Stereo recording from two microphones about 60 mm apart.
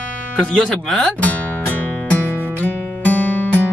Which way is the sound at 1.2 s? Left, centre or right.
Left.